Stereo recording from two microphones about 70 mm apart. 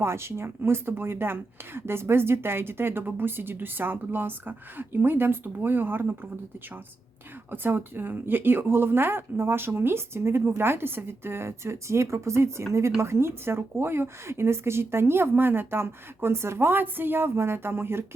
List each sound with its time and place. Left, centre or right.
0.0 s speech: right
7.5 s speech: right